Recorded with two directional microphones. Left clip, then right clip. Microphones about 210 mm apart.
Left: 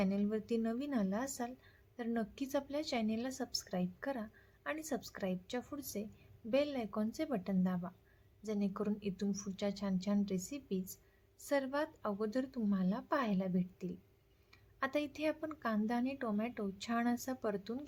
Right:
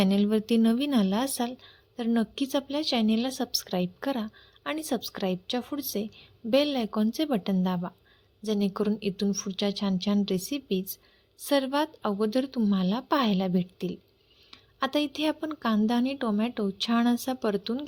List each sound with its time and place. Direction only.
0.0 s a woman's voice: 40° right (ahead or behind)